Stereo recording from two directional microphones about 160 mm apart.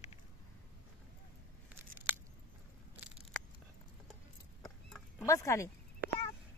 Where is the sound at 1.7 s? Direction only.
10° right (ahead or behind).